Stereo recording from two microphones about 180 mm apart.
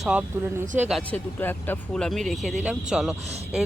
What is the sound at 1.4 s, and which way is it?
Speech, 10° left (ahead or behind).